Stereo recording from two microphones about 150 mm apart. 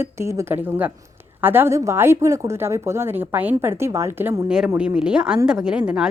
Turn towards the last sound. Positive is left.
turn(degrees=-5)  # may be behind; listen again after turning